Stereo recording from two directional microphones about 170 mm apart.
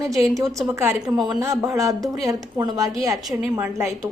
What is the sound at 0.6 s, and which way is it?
A woman's voice, 10° right (ahead or behind).